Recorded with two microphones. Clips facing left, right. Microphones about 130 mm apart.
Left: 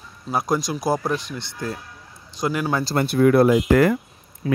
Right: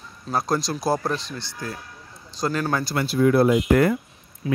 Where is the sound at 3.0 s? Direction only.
60° left (ahead or behind); by 3.9 s 90° left.